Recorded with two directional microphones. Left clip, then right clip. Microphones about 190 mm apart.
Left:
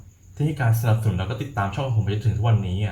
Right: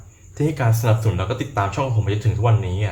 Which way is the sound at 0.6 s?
30° right (ahead or behind).